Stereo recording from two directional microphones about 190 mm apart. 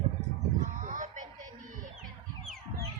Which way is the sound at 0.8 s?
40° right (ahead or behind).